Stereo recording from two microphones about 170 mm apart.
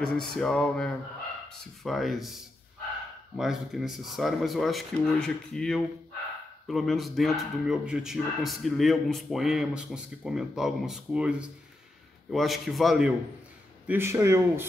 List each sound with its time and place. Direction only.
0.0 s speech: 5° left (ahead or behind)
13.8 s a man's voice: 15° right (ahead or behind)